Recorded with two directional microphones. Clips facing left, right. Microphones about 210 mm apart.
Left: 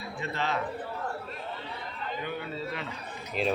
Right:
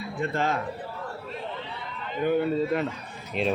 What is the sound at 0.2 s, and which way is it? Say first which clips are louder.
Speech: right 5 dB; 50° right (ahead or behind).